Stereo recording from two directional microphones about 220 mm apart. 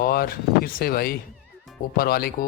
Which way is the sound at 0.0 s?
40° left (ahead or behind).